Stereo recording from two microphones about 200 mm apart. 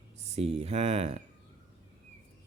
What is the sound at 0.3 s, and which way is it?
Speech, 30° right (ahead or behind).